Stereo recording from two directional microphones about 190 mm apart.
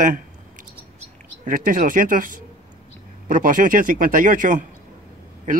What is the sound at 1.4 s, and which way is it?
Speech, 45° right (ahead or behind).